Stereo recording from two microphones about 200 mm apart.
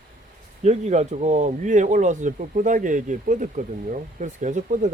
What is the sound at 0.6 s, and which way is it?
Speech, 35° right (ahead or behind).